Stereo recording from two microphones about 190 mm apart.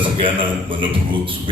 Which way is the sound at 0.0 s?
25° right (ahead or behind).